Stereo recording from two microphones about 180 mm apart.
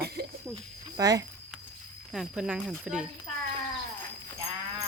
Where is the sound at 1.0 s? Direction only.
20° right (ahead or behind).